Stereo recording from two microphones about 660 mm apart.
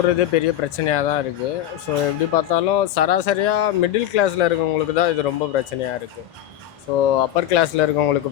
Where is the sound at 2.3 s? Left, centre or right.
Left.